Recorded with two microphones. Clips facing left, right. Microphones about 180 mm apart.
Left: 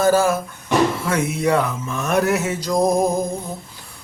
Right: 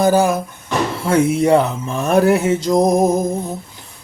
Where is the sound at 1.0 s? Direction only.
30° right (ahead or behind).